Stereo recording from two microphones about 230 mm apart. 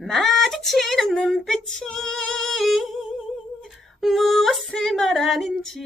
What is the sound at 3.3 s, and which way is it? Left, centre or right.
Female singing, centre.